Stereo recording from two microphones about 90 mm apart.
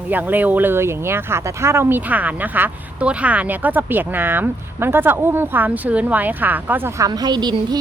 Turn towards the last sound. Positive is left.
turn(degrees=-50)  # may be behind; listen again after turning